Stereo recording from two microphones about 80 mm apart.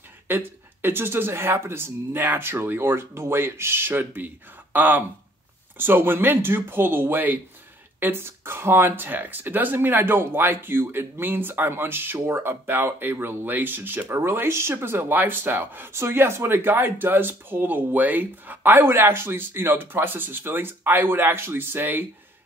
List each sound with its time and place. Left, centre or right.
0.3 s speech: right